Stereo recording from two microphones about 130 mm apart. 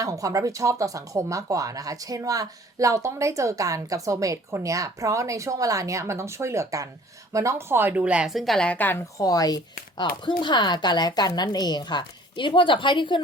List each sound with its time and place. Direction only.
0.0 s a woman's voice: 25° right (ahead or behind); by 9.0 s 15° left (ahead or behind)
9.1 s a woman's voice: 30° left (ahead or behind)